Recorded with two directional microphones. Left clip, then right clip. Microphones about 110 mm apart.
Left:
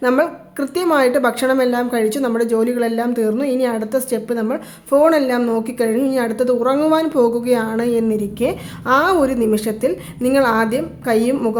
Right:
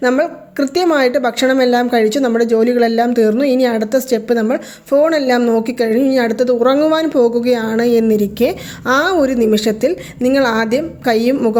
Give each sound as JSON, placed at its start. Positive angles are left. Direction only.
{"t": 0.2, "sound": "a woman's voice", "side_deg": -30}
{"t": 8.9, "sound": "a woman's voice", "side_deg": -30}
{"t": 10.2, "sound": "a woman's voice", "side_deg": -25}